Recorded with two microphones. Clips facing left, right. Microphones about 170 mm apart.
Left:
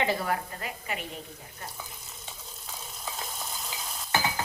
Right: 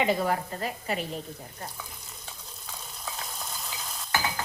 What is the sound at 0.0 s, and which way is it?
Stir, 20° right (ahead or behind).